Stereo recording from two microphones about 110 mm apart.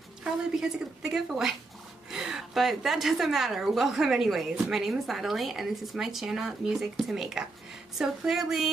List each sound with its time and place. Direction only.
0.2 s a woman's voice: 5° right (ahead or behind)